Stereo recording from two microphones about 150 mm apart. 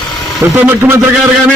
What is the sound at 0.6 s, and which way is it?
Speech, 15° right (ahead or behind).